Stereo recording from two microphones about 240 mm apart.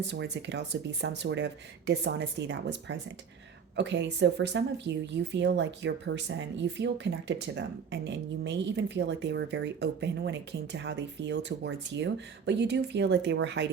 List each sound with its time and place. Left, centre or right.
0.1 s speech: right